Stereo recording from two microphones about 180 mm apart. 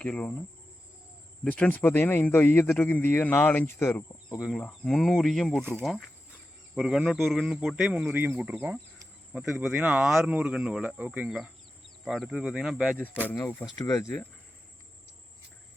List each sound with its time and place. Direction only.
0.0 s speech: 5° left (ahead or behind)
1.5 s a man's voice: 10° left (ahead or behind)
4.4 s speech: 5° left (ahead or behind)
13.3 s a man's voice: 15° left (ahead or behind)